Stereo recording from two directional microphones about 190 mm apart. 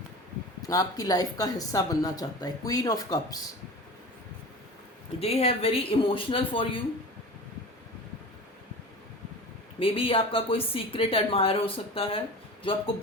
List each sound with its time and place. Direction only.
0.7 s speech: 20° left (ahead or behind)
5.2 s speech: 30° left (ahead or behind)
9.8 s speech: 30° left (ahead or behind)